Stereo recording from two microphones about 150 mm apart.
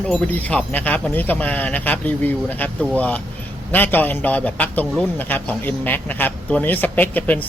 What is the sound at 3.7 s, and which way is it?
A man's voice, 10° left (ahead or behind).